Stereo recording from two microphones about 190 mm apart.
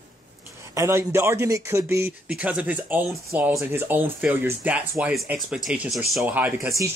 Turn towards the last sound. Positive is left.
turn(degrees=-15)  # may be behind; listen again after turning